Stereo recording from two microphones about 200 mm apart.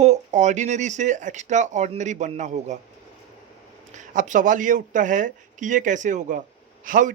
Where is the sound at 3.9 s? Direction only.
40° right (ahead or behind).